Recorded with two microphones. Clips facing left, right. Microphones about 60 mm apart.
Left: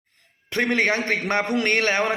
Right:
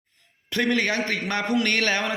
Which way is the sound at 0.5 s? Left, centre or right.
Left.